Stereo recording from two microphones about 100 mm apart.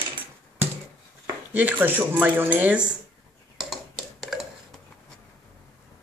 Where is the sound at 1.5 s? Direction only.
15° right (ahead or behind).